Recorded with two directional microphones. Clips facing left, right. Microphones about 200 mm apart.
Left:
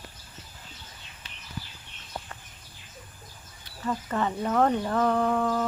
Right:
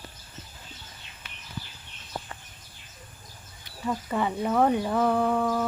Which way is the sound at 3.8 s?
15° right (ahead or behind).